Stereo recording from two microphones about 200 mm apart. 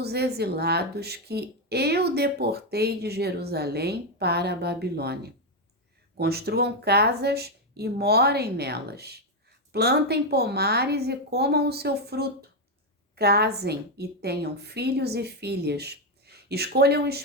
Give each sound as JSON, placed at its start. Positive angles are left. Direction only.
{"t": 0.0, "sound": "speech", "side_deg": -55}